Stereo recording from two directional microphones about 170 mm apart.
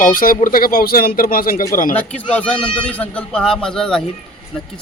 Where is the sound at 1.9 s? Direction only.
5° left (ahead or behind).